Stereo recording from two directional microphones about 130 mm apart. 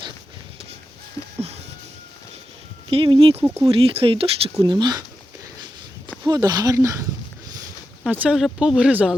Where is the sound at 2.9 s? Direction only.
45° right (ahead or behind).